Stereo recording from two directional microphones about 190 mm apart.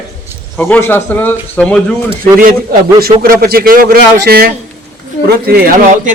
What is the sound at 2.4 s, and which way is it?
Speech, 50° right (ahead or behind).